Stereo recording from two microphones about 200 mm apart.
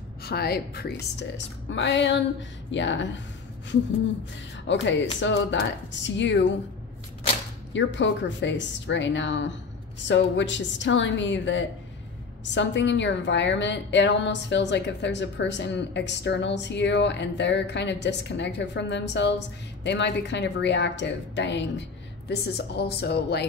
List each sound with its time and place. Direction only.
0.2 s a woman's voice: 50° left (ahead or behind)
4.6 s a woman's voice: 65° left (ahead or behind)
7.7 s a woman's voice: 65° left (ahead or behind)